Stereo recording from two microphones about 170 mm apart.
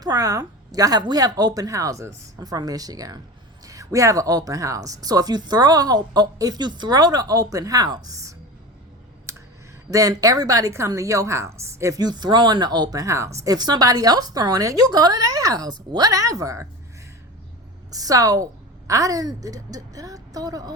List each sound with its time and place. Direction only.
0.0 s a woman's voice: 20° right (ahead or behind)
9.3 s clicking: 15° right (ahead or behind)
9.9 s a woman's voice: 20° right (ahead or behind)
17.9 s a woman's voice: 20° right (ahead or behind)